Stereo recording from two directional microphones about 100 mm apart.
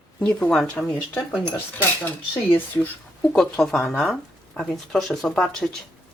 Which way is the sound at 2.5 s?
20° left (ahead or behind).